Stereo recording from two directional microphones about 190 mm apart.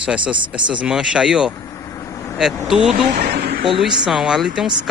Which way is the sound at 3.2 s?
50° right (ahead or behind).